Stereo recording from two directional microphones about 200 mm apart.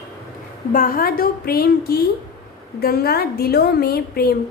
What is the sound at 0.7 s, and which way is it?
A woman's voice, 45° left (ahead or behind).